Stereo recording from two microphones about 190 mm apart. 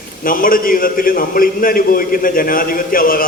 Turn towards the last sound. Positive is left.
turn(degrees=50)  # may be behind; listen again after turning